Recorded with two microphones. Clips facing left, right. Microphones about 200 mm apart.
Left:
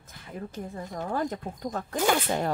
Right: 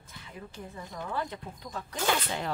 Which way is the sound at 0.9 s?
45° left (ahead or behind).